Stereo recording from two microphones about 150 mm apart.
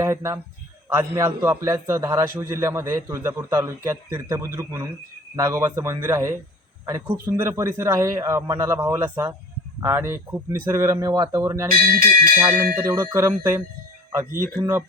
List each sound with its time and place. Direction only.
0.0 s a man's voice: 20° right (ahead or behind)
7.3 s a man's voice: 20° right (ahead or behind)
11.7 s speech: 70° right (ahead or behind)
12.4 s speech: 15° right (ahead or behind)
14.3 s speech: 70° right (ahead or behind)
14.6 s a man's voice: 20° right (ahead or behind)